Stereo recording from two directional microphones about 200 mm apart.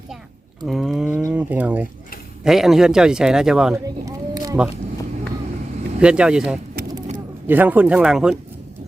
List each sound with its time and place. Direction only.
0.6 s speech: centre (ahead or behind)
3.8 s a sound: 15° right (ahead or behind)
6.0 s speech: 5° right (ahead or behind)